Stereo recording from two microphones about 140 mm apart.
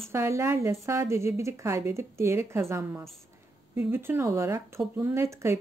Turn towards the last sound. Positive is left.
turn(degrees=-20)  # may be behind; listen again after turning